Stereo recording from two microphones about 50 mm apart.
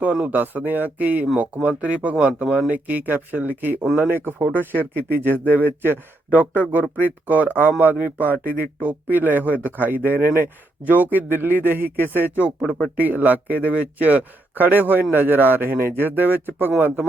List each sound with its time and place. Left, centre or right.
0.3 s speech: right
4.1 s speech: right